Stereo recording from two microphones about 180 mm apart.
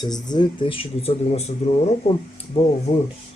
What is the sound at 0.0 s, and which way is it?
Speech, 25° left (ahead or behind).